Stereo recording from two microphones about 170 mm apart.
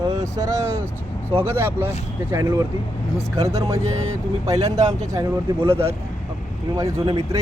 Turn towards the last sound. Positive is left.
turn(degrees=-25)  # may be behind; listen again after turning